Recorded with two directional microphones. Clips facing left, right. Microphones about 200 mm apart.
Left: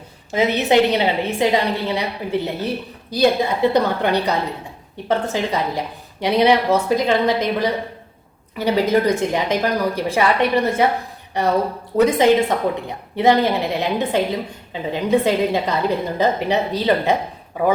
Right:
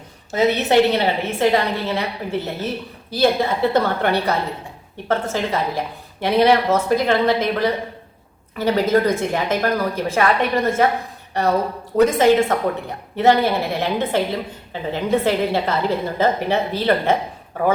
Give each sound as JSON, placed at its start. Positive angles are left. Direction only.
{"t": 0.3, "sound": "a woman's voice", "side_deg": 15}
{"t": 12.0, "sound": "a woman's voice", "side_deg": 15}